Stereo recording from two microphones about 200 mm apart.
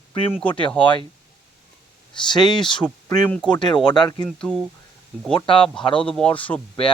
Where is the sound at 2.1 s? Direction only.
20° left (ahead or behind).